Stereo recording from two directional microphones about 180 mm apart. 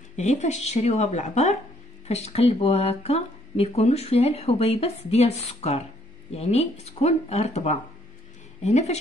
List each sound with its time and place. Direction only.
0.1 s speech: 40° left (ahead or behind)